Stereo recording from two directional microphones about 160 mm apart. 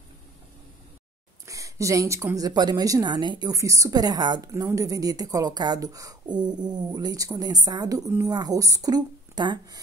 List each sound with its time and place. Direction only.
1.4 s a woman's voice: 20° right (ahead or behind)